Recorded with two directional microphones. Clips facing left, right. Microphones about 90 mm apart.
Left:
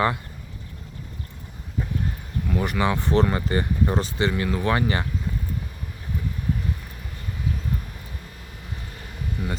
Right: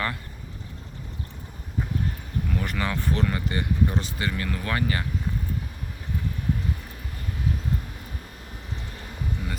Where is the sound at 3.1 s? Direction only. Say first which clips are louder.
Left 7 dB; 35° left (ahead or behind).